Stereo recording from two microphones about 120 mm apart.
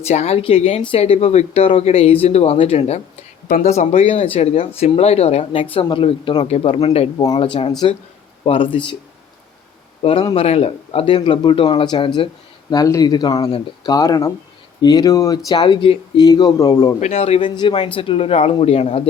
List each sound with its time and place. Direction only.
0.0 s speech: 65° left (ahead or behind)
5.9 s speech: 45° left (ahead or behind)
10.0 s speech: 50° left (ahead or behind)
10.3 s speech: 60° left (ahead or behind)
11.0 s speech: 45° left (ahead or behind)
12.7 s speech: 30° left (ahead or behind)
17.0 s speech: 60° left (ahead or behind)
17.4 s speech: 40° left (ahead or behind); by 19.0 s 60° left (ahead or behind)